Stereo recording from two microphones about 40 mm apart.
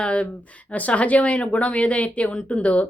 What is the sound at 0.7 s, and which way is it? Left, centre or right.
A woman's voice, left.